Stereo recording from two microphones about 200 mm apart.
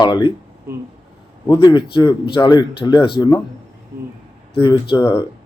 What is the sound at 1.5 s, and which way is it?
Speech, 25° left (ahead or behind).